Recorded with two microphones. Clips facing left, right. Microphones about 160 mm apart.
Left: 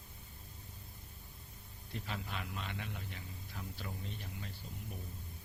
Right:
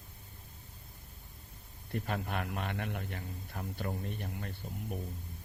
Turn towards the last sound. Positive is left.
turn(degrees=-55)  # may be behind; listen again after turning